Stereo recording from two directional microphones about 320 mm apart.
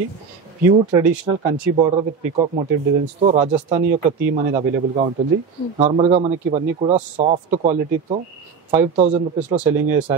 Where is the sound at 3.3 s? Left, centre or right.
Right.